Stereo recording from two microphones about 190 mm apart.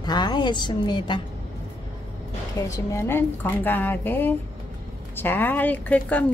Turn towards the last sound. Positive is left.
turn(degrees=10)  # may be behind; listen again after turning